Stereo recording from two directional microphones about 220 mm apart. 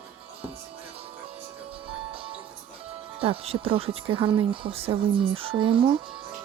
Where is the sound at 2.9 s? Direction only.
25° right (ahead or behind).